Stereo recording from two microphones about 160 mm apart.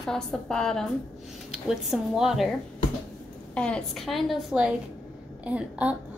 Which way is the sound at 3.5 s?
5° left (ahead or behind).